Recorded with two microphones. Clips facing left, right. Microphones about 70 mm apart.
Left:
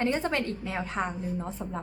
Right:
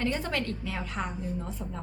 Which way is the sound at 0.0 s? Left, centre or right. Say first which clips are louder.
Left 3 dB; left.